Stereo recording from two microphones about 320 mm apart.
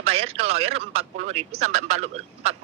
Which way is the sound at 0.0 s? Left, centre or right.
Centre.